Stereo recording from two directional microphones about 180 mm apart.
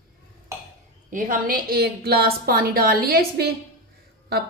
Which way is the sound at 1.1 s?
45° right (ahead or behind).